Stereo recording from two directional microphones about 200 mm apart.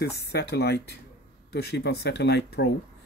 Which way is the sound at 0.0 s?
55° left (ahead or behind).